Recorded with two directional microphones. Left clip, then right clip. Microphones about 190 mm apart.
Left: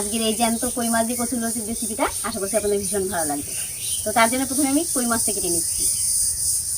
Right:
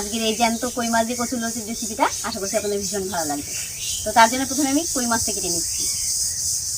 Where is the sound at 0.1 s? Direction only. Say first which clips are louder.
Right 2 dB; centre (ahead or behind).